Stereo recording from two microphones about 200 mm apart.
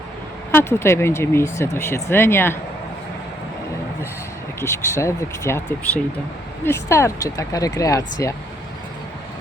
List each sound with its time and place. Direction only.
0.5 s speech: 10° left (ahead or behind)
4.6 s speech: 15° left (ahead or behind)